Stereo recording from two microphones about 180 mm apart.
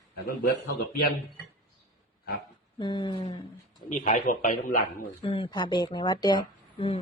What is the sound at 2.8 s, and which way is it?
Speech, 25° left (ahead or behind).